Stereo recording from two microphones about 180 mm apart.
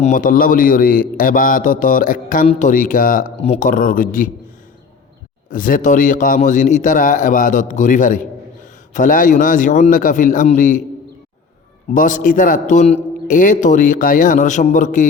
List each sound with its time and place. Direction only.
0.0 s a man's voice: 45° left (ahead or behind)
3.3 s a man's voice: 35° left (ahead or behind)
5.5 s a man's voice: 50° left (ahead or behind)
11.9 s a man's voice: 45° left (ahead or behind)